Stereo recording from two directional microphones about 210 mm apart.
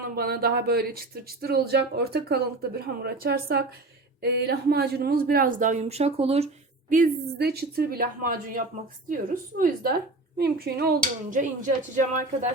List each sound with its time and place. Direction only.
0.2 s a woman's voice: 45° right (ahead or behind); by 6.5 s 30° right (ahead or behind)
6.9 s a woman's voice: 45° right (ahead or behind)